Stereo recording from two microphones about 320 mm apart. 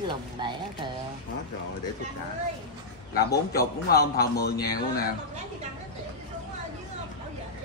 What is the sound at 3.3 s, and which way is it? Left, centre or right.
Speech, left.